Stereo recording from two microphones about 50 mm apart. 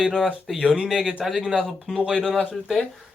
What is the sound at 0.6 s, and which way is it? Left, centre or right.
Speech, centre.